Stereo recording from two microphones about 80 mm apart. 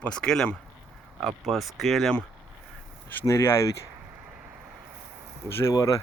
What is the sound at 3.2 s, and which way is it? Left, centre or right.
Speech, left.